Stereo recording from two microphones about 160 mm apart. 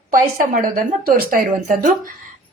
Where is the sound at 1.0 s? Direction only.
60° right (ahead or behind).